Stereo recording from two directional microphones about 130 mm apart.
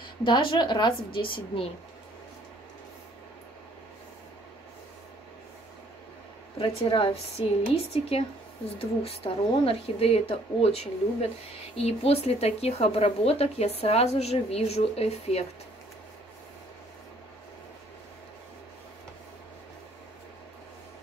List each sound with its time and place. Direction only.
0.0 s a woman's voice: 40° left (ahead or behind)
6.6 s speech: 45° left (ahead or behind)